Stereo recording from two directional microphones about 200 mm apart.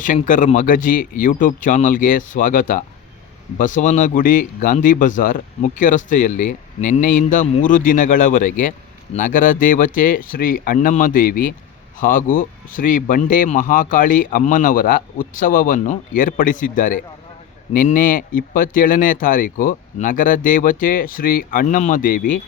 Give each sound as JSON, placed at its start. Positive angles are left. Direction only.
{"t": 0.0, "sound": "speech", "side_deg": 40}